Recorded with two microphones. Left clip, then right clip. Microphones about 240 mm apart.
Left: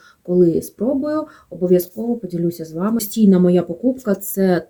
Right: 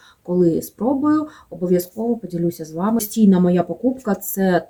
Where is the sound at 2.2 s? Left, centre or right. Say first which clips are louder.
Left 1 dB; centre.